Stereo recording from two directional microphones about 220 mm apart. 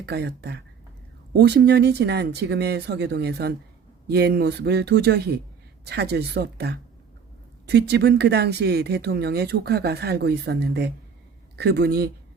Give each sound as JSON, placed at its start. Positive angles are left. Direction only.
{"t": 0.0, "sound": "speech", "side_deg": -50}